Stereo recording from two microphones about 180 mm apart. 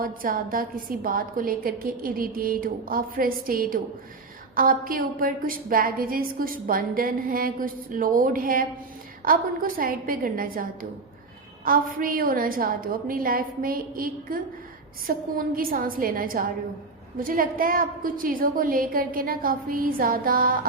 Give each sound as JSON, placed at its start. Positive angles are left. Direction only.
{"t": 0.0, "sound": "a woman's voice", "side_deg": -50}